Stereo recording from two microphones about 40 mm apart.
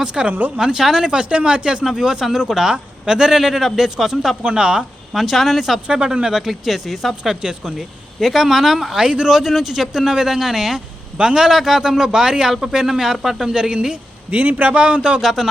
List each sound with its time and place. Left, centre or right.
0.0 s a man's voice: right
4.4 s speech: right
5.1 s speech: centre
5.9 s speech: right
6.5 s speech: centre
9.0 s speech: centre
9.3 s speech: centre
13.5 s speech: right
14.3 s a man's voice: right
14.7 s speech: right
15.2 s speech: centre